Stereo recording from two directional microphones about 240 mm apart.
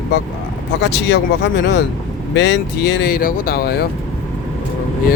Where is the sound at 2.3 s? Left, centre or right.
Left.